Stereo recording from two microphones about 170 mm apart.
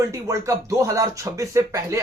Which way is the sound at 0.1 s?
20° right (ahead or behind).